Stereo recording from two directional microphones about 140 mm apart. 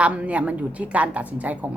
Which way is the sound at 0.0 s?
10° right (ahead or behind).